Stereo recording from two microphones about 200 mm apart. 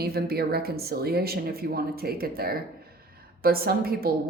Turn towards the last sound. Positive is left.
turn(degrees=-50)  # may be behind; listen again after turning